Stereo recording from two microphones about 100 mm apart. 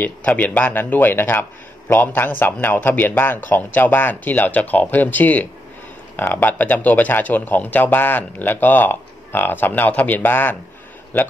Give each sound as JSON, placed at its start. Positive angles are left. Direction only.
{"t": 0.0, "sound": "speech", "side_deg": 15}